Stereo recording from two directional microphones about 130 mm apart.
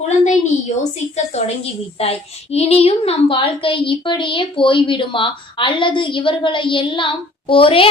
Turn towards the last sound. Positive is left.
turn(degrees=45)  # may be behind; listen again after turning